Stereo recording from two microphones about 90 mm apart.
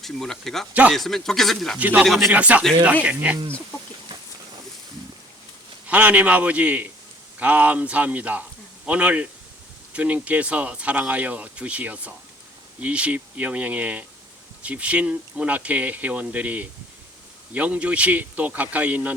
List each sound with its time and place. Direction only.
0.0 s speech: 5° left (ahead or behind)
0.7 s speech: 15° right (ahead or behind)
0.9 s speech: 5° left (ahead or behind)
1.8 s speech: 20° right (ahead or behind)
2.0 s speech: centre (ahead or behind)
2.3 s speech: 15° right (ahead or behind)
5.9 s speech: 15° right (ahead or behind)